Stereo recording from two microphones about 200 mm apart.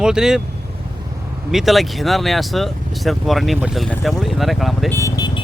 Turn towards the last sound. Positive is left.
turn(degrees=20)  # may be behind; listen again after turning